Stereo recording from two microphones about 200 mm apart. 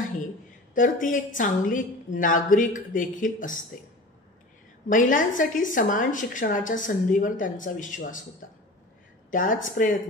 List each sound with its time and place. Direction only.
0.7 s a woman's voice: 40° left (ahead or behind)
4.8 s a woman's voice: 40° left (ahead or behind)